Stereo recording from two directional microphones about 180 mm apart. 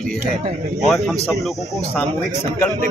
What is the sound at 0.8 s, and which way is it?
Speech, centre (ahead or behind).